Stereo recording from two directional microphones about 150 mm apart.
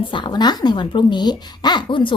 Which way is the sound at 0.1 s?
30° left (ahead or behind).